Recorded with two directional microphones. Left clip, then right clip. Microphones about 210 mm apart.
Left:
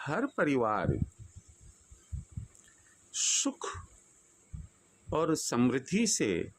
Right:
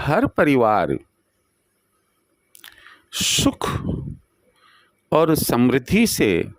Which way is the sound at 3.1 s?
50° right (ahead or behind).